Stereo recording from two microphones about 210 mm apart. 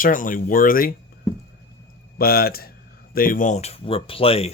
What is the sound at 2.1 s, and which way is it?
Speech, 45° left (ahead or behind).